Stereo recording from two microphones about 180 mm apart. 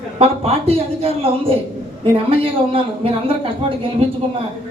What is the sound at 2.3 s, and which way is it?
Speech, 30° right (ahead or behind).